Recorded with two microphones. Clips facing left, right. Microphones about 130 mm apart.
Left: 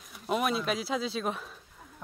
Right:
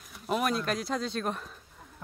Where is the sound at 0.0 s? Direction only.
Centre (ahead or behind).